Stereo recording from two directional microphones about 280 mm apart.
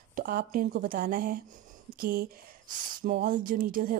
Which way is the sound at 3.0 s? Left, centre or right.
Right.